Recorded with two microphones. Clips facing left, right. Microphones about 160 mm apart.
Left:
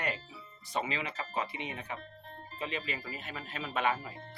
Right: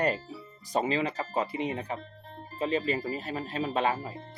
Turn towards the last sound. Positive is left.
turn(degrees=-30)  # may be behind; listen again after turning